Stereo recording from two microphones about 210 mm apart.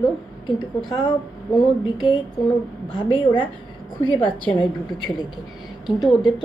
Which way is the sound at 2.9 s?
20° left (ahead or behind).